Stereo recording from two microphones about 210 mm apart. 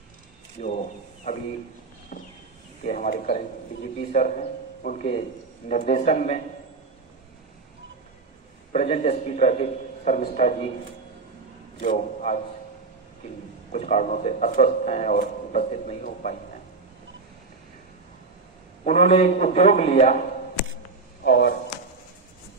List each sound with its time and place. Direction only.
2.8 s speech: 40° left (ahead or behind)
8.7 s speech: 30° left (ahead or behind)
11.8 s speech: 35° left (ahead or behind)
13.7 s speech: 35° left (ahead or behind)
18.9 s speech: 30° left (ahead or behind)
21.2 s speech: 50° left (ahead or behind)